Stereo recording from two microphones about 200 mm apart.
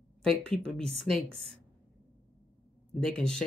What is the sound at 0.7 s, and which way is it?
Speech, centre (ahead or behind).